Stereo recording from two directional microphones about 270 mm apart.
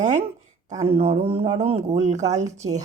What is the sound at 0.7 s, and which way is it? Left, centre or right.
Speech, right.